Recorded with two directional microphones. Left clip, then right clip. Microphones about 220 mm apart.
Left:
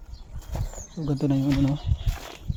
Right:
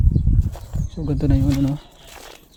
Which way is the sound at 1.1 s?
25° right (ahead or behind).